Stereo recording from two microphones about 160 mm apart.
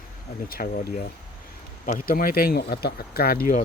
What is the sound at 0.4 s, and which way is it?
Speech, 65° left (ahead or behind).